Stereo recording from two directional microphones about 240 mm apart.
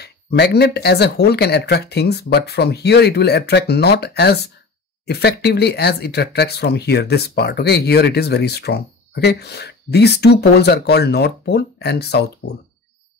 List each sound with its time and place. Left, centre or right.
0.0 s speech: left